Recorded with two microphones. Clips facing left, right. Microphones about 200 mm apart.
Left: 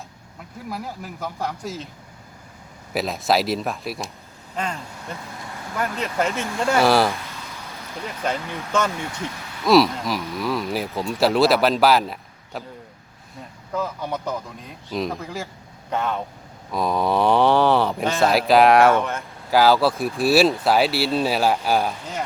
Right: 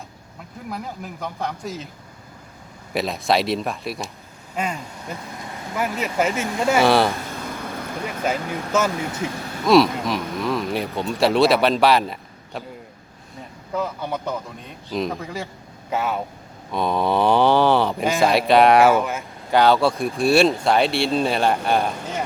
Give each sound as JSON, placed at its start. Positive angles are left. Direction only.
{"t": 0.7, "sound": "speech", "side_deg": 5}
{"t": 2.9, "sound": "speech", "side_deg": 0}
{"t": 7.2, "sound": "vehicle", "side_deg": -50}
{"t": 8.2, "sound": "speech", "side_deg": -5}
{"t": 13.7, "sound": "speech", "side_deg": -5}